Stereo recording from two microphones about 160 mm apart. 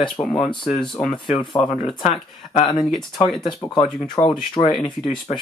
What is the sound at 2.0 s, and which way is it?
Speech, 45° left (ahead or behind).